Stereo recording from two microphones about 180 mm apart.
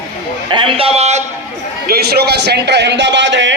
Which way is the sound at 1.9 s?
60° right (ahead or behind).